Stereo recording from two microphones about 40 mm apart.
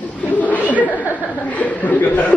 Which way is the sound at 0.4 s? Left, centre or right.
Left.